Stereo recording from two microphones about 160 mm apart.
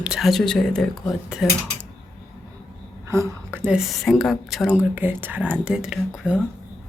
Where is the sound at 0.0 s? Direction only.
5° right (ahead or behind).